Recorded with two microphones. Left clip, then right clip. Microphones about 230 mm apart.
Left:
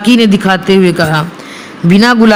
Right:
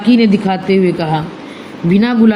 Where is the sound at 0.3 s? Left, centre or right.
Left.